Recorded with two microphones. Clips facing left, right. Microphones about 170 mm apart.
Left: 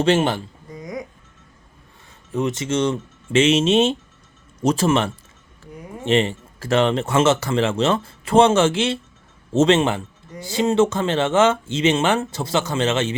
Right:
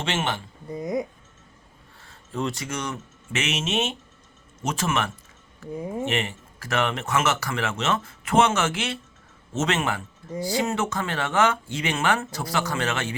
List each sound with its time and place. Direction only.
0.0 s speech: 35° left (ahead or behind)
0.7 s speech: 25° right (ahead or behind)
2.0 s speech: 20° left (ahead or behind)